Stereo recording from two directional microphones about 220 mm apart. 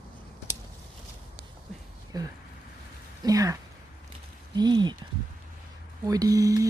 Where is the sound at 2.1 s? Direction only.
15° right (ahead or behind).